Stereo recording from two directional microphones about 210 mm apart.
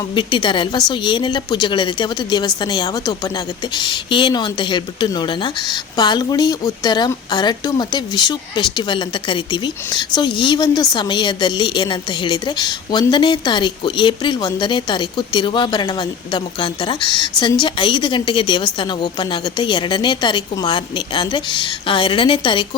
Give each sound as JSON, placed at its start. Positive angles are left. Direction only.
{"t": 0.1, "sound": "a woman's voice", "side_deg": 25}